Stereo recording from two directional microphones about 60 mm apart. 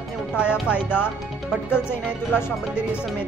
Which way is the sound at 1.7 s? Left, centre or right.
Left.